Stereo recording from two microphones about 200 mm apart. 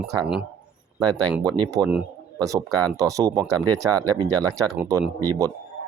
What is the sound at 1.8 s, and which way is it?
Speech, 5° right (ahead or behind).